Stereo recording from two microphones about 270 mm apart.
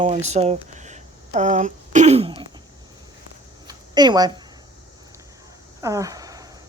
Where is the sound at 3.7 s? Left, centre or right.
Centre.